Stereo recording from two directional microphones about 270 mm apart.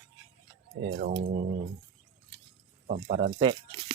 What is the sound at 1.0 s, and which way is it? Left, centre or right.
Speech, right.